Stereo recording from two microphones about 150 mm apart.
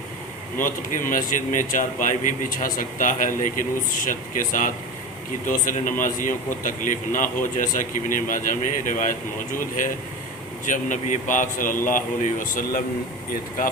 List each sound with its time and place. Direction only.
0.5 s a man's voice: 60° left (ahead or behind)